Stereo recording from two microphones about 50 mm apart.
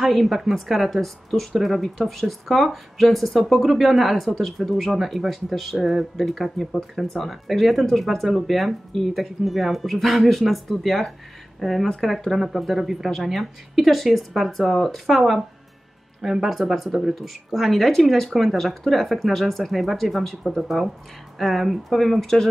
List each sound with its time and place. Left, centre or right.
0.0 s speech: centre